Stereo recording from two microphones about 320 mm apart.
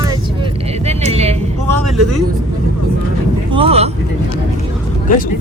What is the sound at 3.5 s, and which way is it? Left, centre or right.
Vehicle, centre.